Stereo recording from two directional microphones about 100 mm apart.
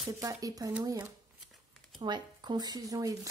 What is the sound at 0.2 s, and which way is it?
Speech, 35° right (ahead or behind).